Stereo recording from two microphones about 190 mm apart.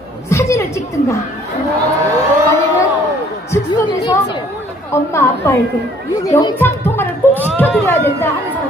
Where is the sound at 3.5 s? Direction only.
25° left (ahead or behind).